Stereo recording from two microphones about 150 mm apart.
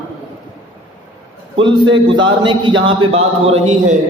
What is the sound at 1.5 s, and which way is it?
A man's voice, 30° right (ahead or behind).